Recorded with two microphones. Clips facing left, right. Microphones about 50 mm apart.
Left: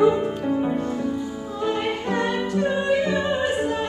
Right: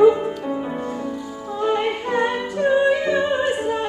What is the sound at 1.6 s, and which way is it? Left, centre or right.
Music, centre.